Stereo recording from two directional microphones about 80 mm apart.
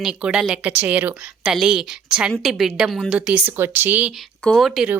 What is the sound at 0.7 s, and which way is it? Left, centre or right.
Speech, right.